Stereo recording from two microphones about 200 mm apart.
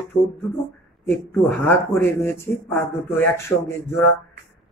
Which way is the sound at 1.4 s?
10° left (ahead or behind).